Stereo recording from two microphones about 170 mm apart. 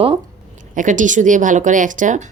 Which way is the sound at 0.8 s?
50° right (ahead or behind).